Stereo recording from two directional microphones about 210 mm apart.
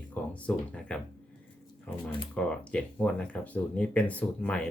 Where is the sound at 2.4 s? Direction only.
5° left (ahead or behind).